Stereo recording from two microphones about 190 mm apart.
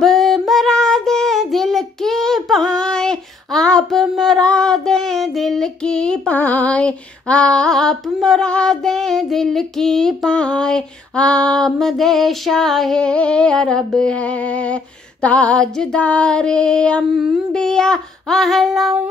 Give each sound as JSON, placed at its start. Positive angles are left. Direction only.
{"t": 0.0, "sound": "child singing", "side_deg": 0}
{"t": 15.2, "sound": "female singing", "side_deg": 5}